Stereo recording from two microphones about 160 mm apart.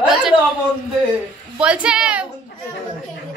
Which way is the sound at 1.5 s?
5° right (ahead or behind).